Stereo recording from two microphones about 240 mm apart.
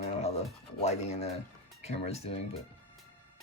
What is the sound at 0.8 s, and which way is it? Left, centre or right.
Speech, left.